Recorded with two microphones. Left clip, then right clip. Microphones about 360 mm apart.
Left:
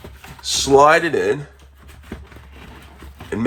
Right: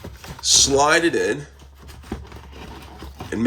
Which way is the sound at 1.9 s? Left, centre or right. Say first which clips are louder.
Right 2 dB; right.